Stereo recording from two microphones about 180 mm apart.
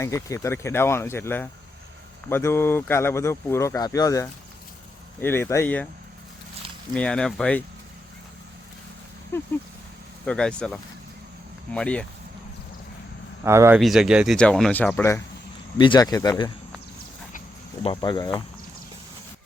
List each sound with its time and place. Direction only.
0.0 s speech: 15° left (ahead or behind)
6.9 s speech: 5° left (ahead or behind)
9.3 s speech: 15° left (ahead or behind)
13.4 s speech: 15° right (ahead or behind)
13.7 s speech: centre (ahead or behind)
15.8 s speech: 25° left (ahead or behind)
17.8 s speech: 25° left (ahead or behind)